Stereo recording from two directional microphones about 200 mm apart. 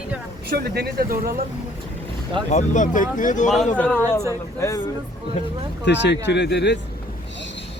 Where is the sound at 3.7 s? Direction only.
5° left (ahead or behind).